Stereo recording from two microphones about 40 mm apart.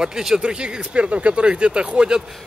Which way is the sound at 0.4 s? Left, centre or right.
Right.